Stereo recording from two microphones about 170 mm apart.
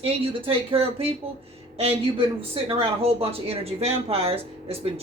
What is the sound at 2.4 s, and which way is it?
Speech, 35° right (ahead or behind).